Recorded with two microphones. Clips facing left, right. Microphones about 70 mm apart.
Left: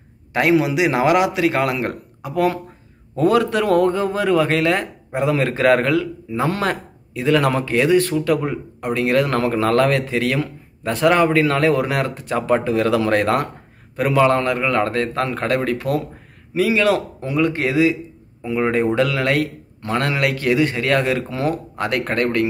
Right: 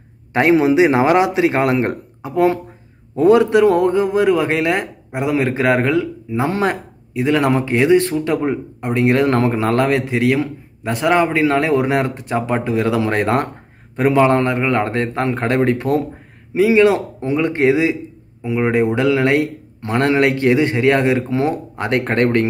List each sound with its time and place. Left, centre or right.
0.3 s a man's voice: right
18.4 s a man's voice: centre; by 22.5 s right